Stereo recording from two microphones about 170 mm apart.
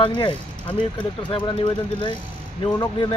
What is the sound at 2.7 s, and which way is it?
Speech, 25° left (ahead or behind).